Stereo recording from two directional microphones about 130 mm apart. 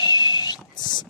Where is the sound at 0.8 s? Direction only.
35° left (ahead or behind).